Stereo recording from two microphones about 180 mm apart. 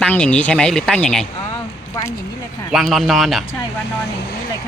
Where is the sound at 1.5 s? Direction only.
20° left (ahead or behind).